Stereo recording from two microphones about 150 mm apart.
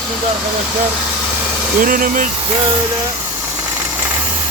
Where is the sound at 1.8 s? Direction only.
70° right (ahead or behind).